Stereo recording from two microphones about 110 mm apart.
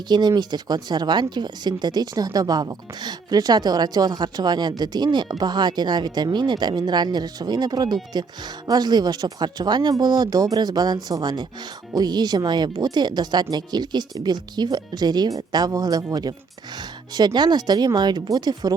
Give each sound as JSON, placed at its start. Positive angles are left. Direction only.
{"t": 0.1, "sound": "speech", "side_deg": -40}